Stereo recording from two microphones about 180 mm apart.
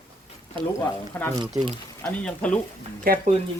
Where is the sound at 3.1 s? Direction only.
55° right (ahead or behind).